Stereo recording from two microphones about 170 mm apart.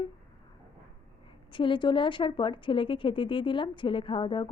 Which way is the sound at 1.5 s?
30° left (ahead or behind).